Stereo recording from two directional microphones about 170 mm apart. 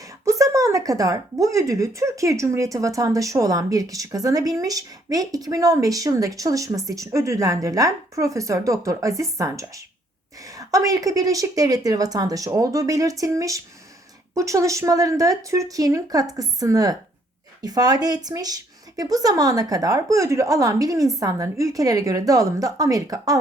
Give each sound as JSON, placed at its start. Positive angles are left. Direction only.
{"t": 0.0, "sound": "speech", "side_deg": -20}